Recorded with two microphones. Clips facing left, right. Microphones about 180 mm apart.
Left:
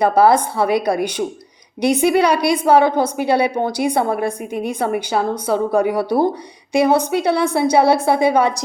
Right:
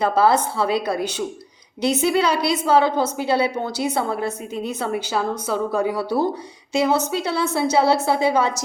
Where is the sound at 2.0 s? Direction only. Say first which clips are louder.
Left 5 dB; 60° left (ahead or behind).